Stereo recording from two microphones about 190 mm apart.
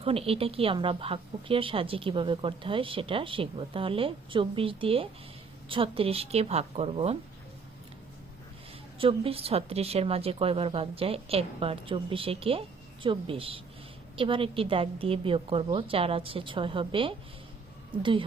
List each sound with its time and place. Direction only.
0.0 s a woman's voice: 30° right (ahead or behind)
9.0 s a woman's voice: 30° right (ahead or behind)